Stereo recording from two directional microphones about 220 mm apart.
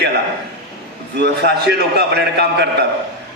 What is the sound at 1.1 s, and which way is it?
Speech, 50° right (ahead or behind).